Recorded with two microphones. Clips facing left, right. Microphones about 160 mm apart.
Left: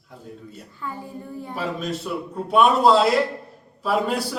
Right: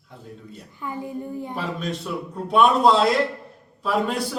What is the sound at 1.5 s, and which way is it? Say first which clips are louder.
A man's voice: left 4 dB; centre (ahead or behind).